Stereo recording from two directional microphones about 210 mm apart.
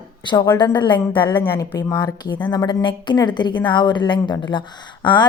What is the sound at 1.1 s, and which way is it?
A woman's voice, 10° left (ahead or behind).